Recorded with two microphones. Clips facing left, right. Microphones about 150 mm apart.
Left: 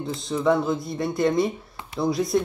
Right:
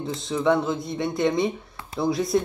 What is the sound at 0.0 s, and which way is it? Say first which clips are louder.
Speech: even; centre (ahead or behind).